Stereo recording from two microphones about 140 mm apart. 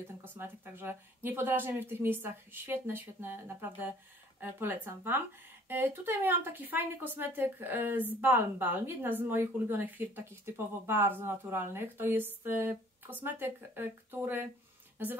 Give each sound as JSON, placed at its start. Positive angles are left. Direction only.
{"t": 0.2, "sound": "speech", "side_deg": -15}